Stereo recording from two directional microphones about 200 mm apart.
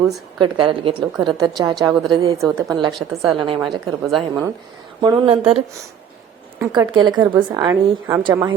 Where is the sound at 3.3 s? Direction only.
25° right (ahead or behind).